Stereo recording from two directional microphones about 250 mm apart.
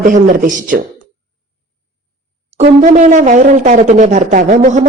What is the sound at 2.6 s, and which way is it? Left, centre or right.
Speech, right.